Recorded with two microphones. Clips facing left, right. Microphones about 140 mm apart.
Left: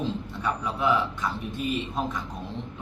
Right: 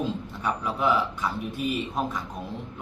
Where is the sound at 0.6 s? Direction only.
10° right (ahead or behind).